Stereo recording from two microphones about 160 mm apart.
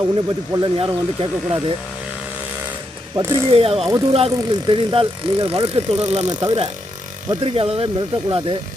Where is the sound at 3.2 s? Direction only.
15° right (ahead or behind).